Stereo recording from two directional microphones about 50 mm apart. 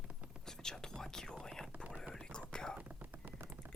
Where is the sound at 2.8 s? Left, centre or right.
Right.